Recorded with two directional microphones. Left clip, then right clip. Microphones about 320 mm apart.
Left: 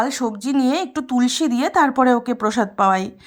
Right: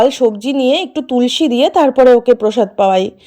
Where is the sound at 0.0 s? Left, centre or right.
Centre.